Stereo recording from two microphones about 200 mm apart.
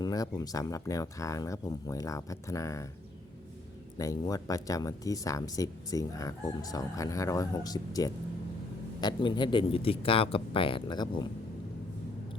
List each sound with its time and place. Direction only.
0.0 s speech: 20° left (ahead or behind)
3.9 s speech: 15° left (ahead or behind)